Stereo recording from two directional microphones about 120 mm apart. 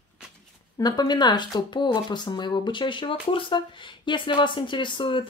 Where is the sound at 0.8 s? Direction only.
35° left (ahead or behind).